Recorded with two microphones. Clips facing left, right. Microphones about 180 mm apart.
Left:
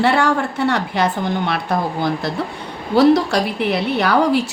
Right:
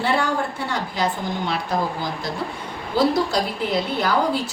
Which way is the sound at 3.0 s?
70° left (ahead or behind).